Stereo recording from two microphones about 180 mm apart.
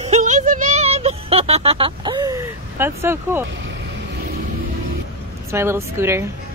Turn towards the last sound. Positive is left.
turn(degrees=-15)  # may be behind; listen again after turning